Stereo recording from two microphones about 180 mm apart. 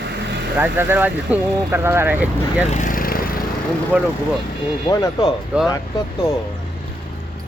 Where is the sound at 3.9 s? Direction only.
5° right (ahead or behind).